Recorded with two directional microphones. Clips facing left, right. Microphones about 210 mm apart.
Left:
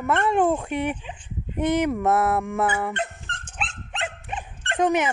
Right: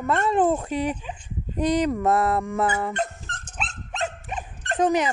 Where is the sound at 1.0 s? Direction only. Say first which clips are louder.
Right 2 dB; 40° right (ahead or behind).